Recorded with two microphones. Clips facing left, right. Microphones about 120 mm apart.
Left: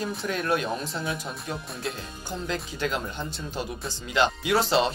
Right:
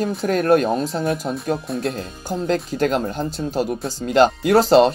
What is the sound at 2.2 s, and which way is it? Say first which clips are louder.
Speech: right 10 dB; 45° right (ahead or behind).